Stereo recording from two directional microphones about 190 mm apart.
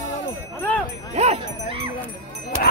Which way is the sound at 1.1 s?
35° right (ahead or behind).